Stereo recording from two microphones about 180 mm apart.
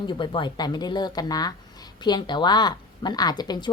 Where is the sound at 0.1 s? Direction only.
25° left (ahead or behind).